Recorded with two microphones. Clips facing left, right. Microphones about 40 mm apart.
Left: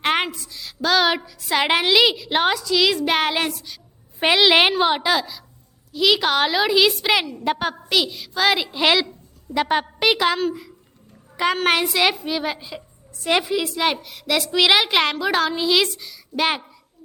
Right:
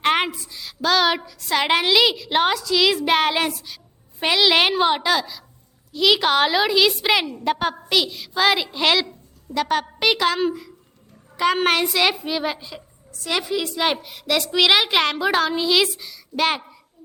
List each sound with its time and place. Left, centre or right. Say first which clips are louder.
0.0 s a woman's voice: right 1 dB; centre
4.2 s a woman's voice: left 2 dB; centre
9.5 s a woman's voice: left 1 dB; centre
10.0 s a woman's voice: left 1 dB; centre
11.4 s a woman's voice: even; centre
13.1 s a sound: left 4 dB; left
13.4 s a woman's voice: left 1 dB; centre